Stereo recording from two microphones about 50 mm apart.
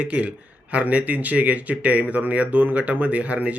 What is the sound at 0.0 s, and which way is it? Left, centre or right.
Speech, right.